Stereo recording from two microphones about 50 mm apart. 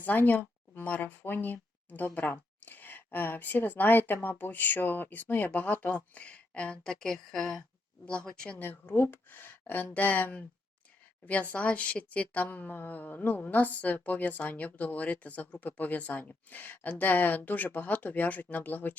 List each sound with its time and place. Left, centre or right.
0.0 s speech: left
6.1 s speech: left
6.8 s speech: centre
8.0 s speech: centre
8.6 s speech: left
11.5 s speech: left